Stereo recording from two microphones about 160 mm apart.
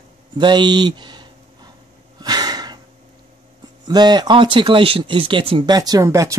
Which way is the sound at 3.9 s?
25° right (ahead or behind).